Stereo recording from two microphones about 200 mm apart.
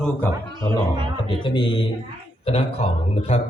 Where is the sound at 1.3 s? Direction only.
25° left (ahead or behind).